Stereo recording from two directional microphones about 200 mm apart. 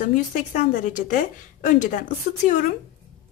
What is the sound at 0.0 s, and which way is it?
A woman's voice, 40° left (ahead or behind).